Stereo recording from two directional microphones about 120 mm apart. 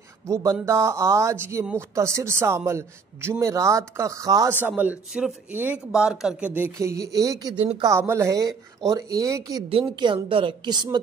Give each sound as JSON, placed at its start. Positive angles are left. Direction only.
{"t": 0.3, "sound": "speech", "side_deg": -25}
{"t": 4.5, "sound": "speech", "side_deg": -15}
{"t": 6.8, "sound": "speech", "side_deg": -25}
{"t": 7.5, "sound": "a woman's voice", "side_deg": -40}
{"t": 7.9, "sound": "speech", "side_deg": -20}
{"t": 9.7, "sound": "a woman's voice", "side_deg": -45}